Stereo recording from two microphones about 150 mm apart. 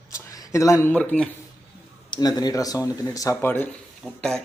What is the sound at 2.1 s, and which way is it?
A man's voice, 25° left (ahead or behind).